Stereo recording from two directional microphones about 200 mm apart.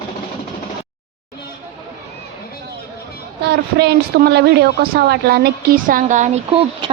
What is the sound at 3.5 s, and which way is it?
A woman's voice, 55° right (ahead or behind).